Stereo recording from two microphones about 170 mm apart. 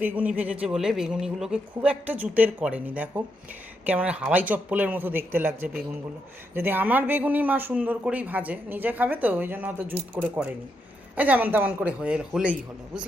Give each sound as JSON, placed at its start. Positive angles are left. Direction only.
{"t": 0.0, "sound": "speech", "side_deg": -10}